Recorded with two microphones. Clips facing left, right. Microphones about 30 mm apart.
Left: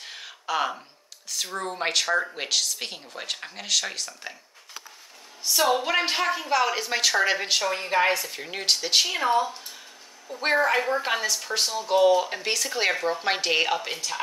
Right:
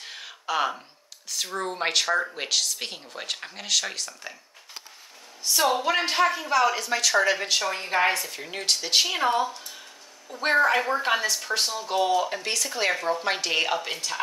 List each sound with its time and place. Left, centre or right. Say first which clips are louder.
0.0 s a sound: right 1 dB; centre
1.3 s speech: right 1 dB; centre
5.5 s speech: even; centre
6.7 s speech: even; centre